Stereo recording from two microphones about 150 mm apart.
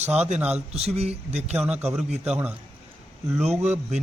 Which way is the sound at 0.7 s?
45° right (ahead or behind).